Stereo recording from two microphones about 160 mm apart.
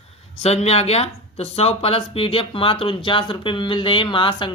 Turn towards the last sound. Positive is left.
turn(degrees=30)  # may be behind; listen again after turning